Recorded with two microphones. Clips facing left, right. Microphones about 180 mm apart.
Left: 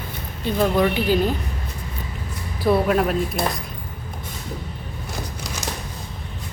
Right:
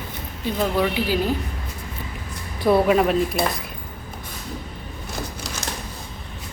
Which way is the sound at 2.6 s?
Centre (ahead or behind).